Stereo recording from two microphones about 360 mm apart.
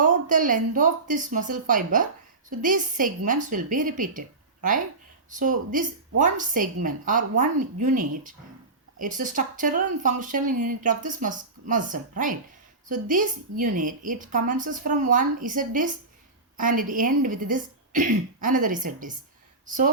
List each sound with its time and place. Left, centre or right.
0.0 s speech: right
5.3 s speech: right